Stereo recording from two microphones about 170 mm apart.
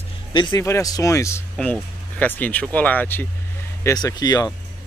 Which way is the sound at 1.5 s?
5° left (ahead or behind).